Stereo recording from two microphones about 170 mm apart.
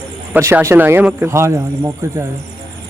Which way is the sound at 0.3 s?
15° right (ahead or behind).